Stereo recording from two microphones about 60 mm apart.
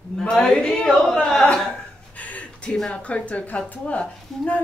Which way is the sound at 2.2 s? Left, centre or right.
Left.